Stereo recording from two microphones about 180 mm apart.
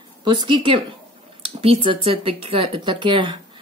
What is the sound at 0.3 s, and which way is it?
Speech, 25° right (ahead or behind).